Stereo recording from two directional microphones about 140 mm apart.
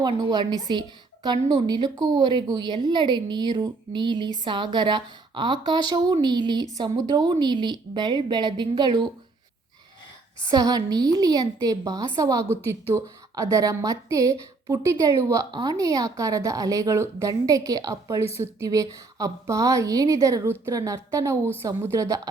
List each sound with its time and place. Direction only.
0.0 s a woman's voice: 30° right (ahead or behind)
10.5 s a woman's voice: 25° right (ahead or behind)